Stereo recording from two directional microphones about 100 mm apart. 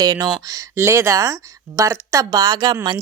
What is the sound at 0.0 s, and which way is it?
Speech, 40° right (ahead or behind).